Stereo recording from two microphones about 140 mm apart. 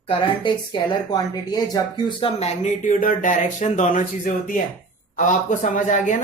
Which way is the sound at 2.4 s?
55° left (ahead or behind).